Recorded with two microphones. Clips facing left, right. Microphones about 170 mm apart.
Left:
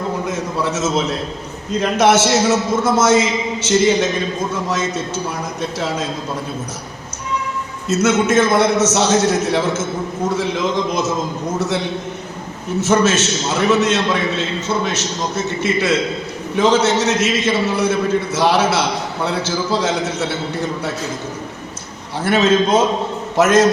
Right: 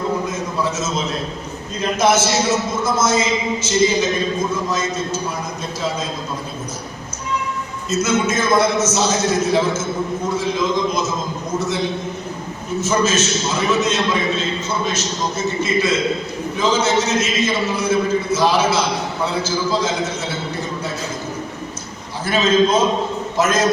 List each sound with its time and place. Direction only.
0.3 s a sound: 75° left (ahead or behind)
1.7 s a man's voice: 70° left (ahead or behind)
7.9 s a man's voice: 75° left (ahead or behind)
12.8 s a man's voice: 70° left (ahead or behind)
15.6 s a man's voice: 70° left (ahead or behind)
22.2 s a man's voice: 70° left (ahead or behind)